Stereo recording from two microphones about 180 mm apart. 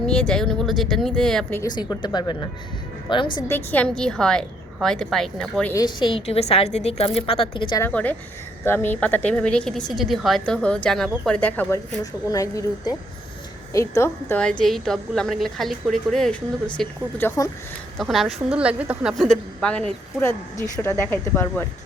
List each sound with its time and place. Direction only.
0.0 s a woman's voice: 5° left (ahead or behind)
1.6 s speech: 20° left (ahead or behind)
3.4 s a woman's voice: 10° left (ahead or behind)
5.7 s a woman's voice: 25° left (ahead or behind)
7.8 s a woman's voice: 10° left (ahead or behind)
17.9 s a woman's voice: centre (ahead or behind)
19.1 s a woman's voice: 5° left (ahead or behind)
21.0 s speech: 15° left (ahead or behind)